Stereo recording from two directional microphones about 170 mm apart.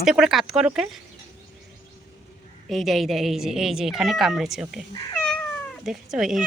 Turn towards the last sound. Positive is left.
turn(degrees=-5)  # may be behind; listen again after turning